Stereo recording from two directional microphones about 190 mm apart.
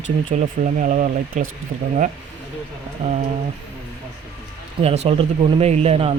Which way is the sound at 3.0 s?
30° right (ahead or behind).